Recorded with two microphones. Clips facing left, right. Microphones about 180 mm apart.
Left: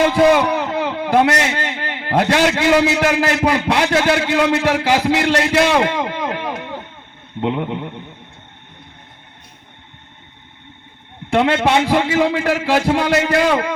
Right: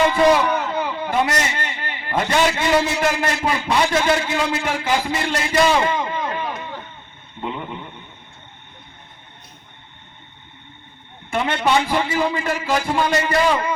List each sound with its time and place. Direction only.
0.3 s a sound: 70° left (ahead or behind)
2.6 s a man's voice: 70° left (ahead or behind)
11.3 s a man's voice: 75° left (ahead or behind)